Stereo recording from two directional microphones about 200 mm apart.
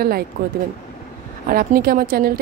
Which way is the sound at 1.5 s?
45° right (ahead or behind).